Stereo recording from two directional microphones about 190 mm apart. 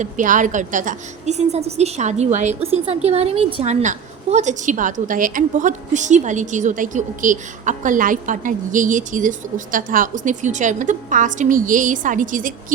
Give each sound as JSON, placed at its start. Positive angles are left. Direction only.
{"t": 0.0, "sound": "a woman's voice", "side_deg": -45}